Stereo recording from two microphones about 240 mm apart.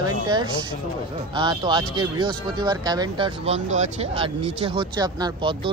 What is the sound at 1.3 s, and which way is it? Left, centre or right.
Speech, centre.